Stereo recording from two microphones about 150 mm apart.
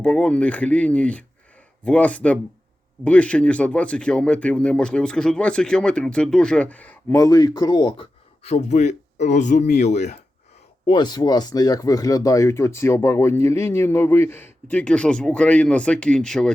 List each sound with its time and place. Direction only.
0.0 s speech: 5° left (ahead or behind)
7.2 s speech: 25° left (ahead or behind)
8.4 s speech: 50° left (ahead or behind)
10.8 s speech: 30° left (ahead or behind); by 16.5 s 5° left (ahead or behind)